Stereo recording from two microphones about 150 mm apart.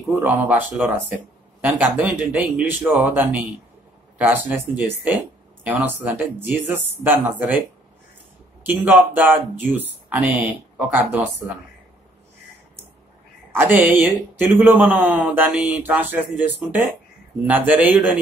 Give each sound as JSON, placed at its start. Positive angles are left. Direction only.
{"t": 0.1, "sound": "speech", "side_deg": -10}
{"t": 1.9, "sound": "speech", "side_deg": -10}
{"t": 8.6, "sound": "speech", "side_deg": -10}
{"t": 13.5, "sound": "speech", "side_deg": -15}